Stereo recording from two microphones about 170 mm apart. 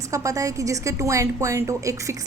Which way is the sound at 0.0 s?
20° right (ahead or behind).